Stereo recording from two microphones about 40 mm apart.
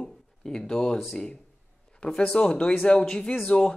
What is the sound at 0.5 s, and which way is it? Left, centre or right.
Speech, centre.